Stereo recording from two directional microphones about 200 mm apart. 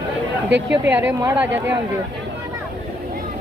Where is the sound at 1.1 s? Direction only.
15° right (ahead or behind).